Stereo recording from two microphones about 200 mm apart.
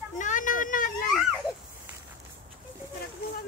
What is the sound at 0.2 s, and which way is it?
Vehicle, 40° left (ahead or behind).